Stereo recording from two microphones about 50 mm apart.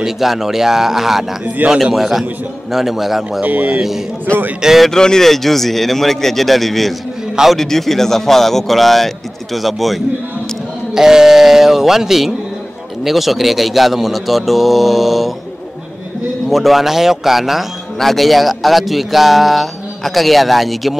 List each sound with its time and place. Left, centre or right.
0.0 s a man's voice: centre
3.4 s a man's voice: right
4.6 s speech: centre
4.9 s a man's voice: centre
16.4 s a man's voice: centre